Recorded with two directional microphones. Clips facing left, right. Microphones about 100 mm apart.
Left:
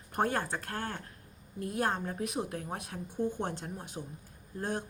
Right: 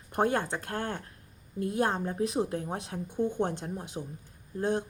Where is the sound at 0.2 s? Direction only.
20° right (ahead or behind).